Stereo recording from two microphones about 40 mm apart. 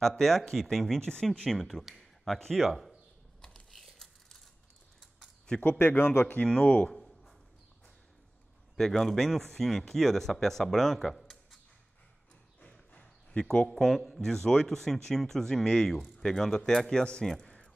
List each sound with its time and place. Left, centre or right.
0.2 s a man's voice: centre
3.3 s mechanisms: centre
3.7 s a sound: centre
5.5 s speech: left
5.9 s speech: left
6.6 s speech: left
6.9 s a sound: centre
8.7 s a man's voice: centre
12.6 s clip-clop: left
13.4 s speech: centre
13.7 s a man's voice: centre